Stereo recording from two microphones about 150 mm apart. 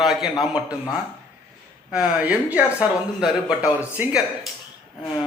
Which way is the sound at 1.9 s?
5° right (ahead or behind).